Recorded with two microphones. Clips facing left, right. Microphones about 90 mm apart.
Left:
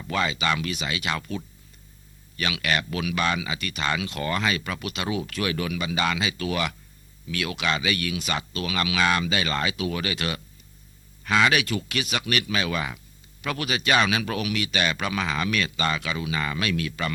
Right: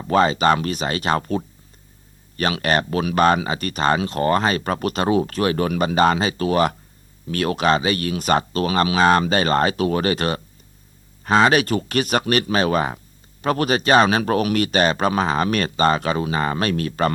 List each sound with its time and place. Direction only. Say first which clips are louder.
0.0 s speech: right 9 dB; 40° right (ahead or behind)